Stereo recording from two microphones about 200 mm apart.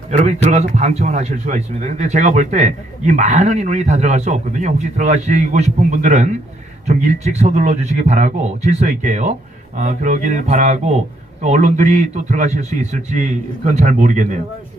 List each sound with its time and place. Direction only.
0.1 s speech: 35° right (ahead or behind)